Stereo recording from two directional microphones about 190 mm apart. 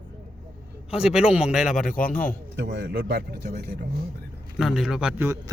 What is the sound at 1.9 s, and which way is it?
Speech, 45° left (ahead or behind).